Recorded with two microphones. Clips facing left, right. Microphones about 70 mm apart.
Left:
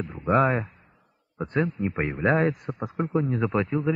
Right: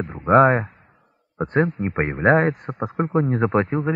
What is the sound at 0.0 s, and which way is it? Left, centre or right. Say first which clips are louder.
Speech: right 7 dB; right.